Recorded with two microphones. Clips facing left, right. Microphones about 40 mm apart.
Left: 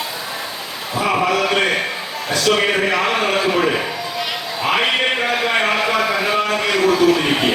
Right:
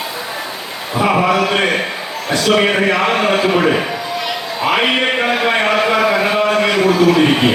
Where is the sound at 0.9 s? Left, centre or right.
Centre.